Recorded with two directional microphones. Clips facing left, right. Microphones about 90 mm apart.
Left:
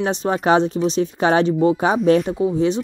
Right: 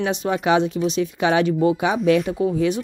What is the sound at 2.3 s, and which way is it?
Speech, 25° left (ahead or behind).